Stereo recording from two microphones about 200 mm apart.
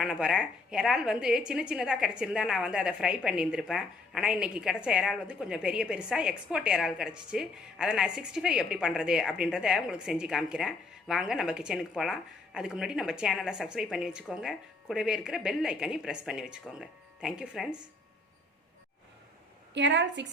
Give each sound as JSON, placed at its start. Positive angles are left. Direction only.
{"t": 0.0, "sound": "a woman's voice", "side_deg": -5}
{"t": 19.7, "sound": "a woman's voice", "side_deg": -65}